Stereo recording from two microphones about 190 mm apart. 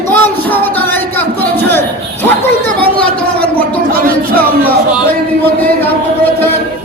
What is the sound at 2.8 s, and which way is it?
Speech, 10° left (ahead or behind).